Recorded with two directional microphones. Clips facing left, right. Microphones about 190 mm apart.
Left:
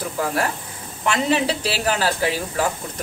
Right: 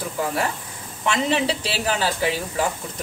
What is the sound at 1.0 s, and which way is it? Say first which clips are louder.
Speech: left 1 dB; centre (ahead or behind).